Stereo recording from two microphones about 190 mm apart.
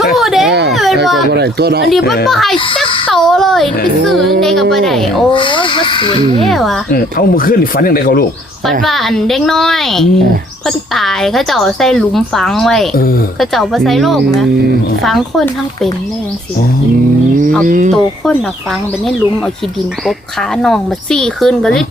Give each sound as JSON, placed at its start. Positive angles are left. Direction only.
{"t": 0.2, "sound": "a sound", "side_deg": 0}
{"t": 1.3, "sound": "speech", "side_deg": -60}
{"t": 2.2, "sound": "a woman's voice", "side_deg": 0}
{"t": 3.1, "sound": "a sound", "side_deg": 0}
{"t": 4.4, "sound": "a woman's voice", "side_deg": 0}
{"t": 5.3, "sound": "speech", "side_deg": 25}
{"t": 6.4, "sound": "a woman's voice", "side_deg": 0}
{"t": 6.9, "sound": "speech", "side_deg": 50}
{"t": 8.8, "sound": "a woman's voice", "side_deg": 0}
{"t": 17.7, "sound": "speech", "side_deg": -45}
{"t": 20.6, "sound": "a woman's voice", "side_deg": 5}